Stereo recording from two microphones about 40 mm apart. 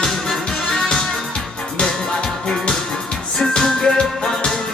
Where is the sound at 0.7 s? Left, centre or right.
Centre.